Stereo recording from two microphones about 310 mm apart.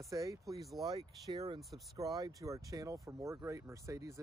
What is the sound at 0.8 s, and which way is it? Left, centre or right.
Speech, centre.